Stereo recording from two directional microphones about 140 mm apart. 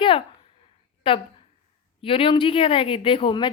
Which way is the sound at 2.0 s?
40° left (ahead or behind).